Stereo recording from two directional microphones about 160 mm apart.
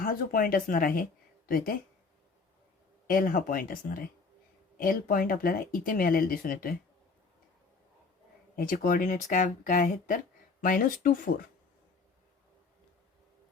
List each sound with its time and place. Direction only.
0.0 s speech: 60° left (ahead or behind)
3.1 s speech: 60° left (ahead or behind)
8.5 s speech: 60° left (ahead or behind)